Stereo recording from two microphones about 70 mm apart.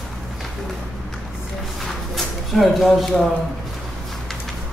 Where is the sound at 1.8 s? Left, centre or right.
Centre.